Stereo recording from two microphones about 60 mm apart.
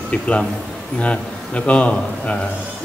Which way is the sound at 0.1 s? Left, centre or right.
Centre.